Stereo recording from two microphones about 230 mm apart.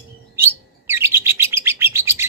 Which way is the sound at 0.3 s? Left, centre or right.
Centre.